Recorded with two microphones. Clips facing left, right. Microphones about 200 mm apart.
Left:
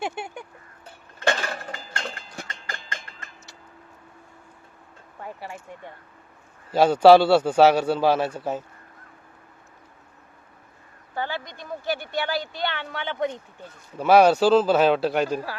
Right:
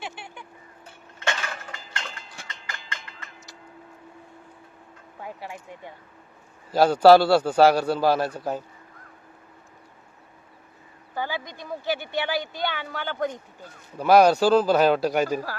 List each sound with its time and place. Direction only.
0.0 s a sound: 45° left (ahead or behind)
1.2 s a sound: 35° left (ahead or behind)
5.2 s speech: 5° right (ahead or behind)
8.3 s speech: 5° left (ahead or behind)
11.1 s speech: 5° right (ahead or behind)
14.3 s speech: 10° right (ahead or behind)